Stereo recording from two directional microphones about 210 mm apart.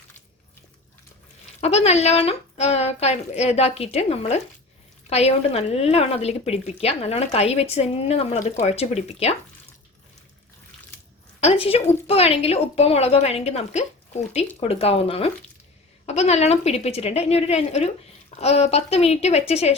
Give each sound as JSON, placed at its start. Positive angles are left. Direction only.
{"t": 1.6, "sound": "speech", "side_deg": 30}
{"t": 11.3, "sound": "a sound", "side_deg": 30}
{"t": 12.0, "sound": "speech", "side_deg": 30}